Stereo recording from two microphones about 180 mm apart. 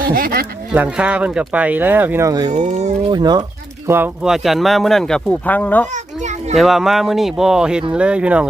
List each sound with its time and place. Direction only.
0.0 s speech: 55° right (ahead or behind)
0.7 s speech: 5° right (ahead or behind)
2.5 s speech: 40° right (ahead or behind)
3.1 s speech: 20° right (ahead or behind)
3.8 s speech: 10° right (ahead or behind); by 5.9 s 10° left (ahead or behind)
5.9 s children playing: 40° right (ahead or behind)
6.6 s speech: centre (ahead or behind)